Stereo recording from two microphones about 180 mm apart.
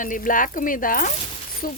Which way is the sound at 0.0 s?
50° left (ahead or behind).